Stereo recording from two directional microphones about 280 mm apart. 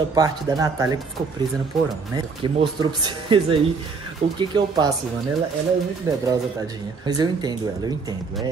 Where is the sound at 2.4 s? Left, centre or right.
Centre.